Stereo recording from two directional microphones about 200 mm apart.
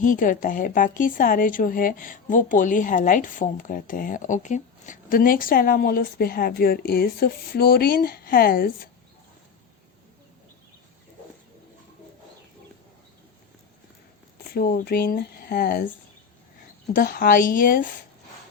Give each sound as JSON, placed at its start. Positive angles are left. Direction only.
{"t": 0.0, "sound": "a woman's voice", "side_deg": 40}
{"t": 14.3, "sound": "speech", "side_deg": 50}
{"t": 16.9, "sound": "a woman's voice", "side_deg": 45}